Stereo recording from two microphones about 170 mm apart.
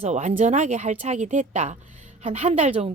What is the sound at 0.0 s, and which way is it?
Speech, 40° right (ahead or behind).